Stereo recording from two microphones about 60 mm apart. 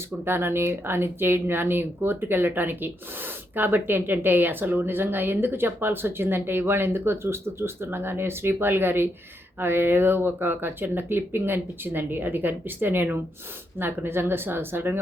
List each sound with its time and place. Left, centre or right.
0.3 s speech: right